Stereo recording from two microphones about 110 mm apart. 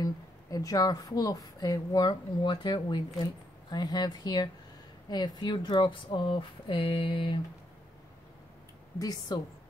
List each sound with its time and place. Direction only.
0.0 s a woman's voice: 35° left (ahead or behind); by 7.3 s 50° left (ahead or behind)
8.9 s a woman's voice: 35° left (ahead or behind)